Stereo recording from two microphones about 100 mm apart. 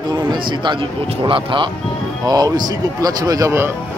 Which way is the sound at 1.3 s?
60° right (ahead or behind).